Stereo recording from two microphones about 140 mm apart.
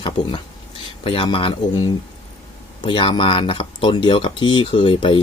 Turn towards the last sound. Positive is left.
turn(degrees=35)  # may be behind; listen again after turning